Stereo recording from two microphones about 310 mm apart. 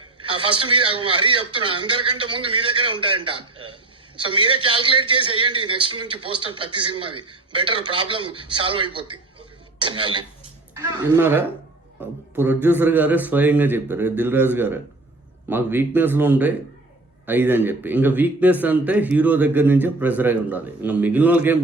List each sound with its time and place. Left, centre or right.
0.4 s a man's voice: centre
3.2 s a sound: centre
4.2 s a man's voice: centre